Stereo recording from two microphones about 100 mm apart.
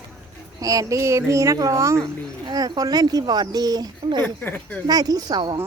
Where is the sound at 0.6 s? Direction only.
35° right (ahead or behind).